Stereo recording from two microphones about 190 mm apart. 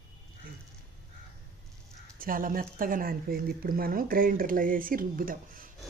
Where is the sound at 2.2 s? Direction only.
45° right (ahead or behind).